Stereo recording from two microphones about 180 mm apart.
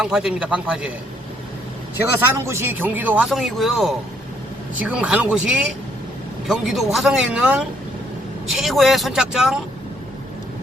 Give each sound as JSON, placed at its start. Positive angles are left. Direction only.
{"t": 0.0, "sound": "speech", "side_deg": -5}
{"t": 2.1, "sound": "speech", "side_deg": -15}